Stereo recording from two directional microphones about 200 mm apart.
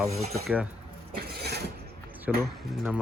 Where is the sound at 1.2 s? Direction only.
50° right (ahead or behind).